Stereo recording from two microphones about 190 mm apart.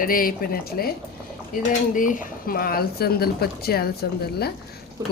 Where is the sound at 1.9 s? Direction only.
45° left (ahead or behind).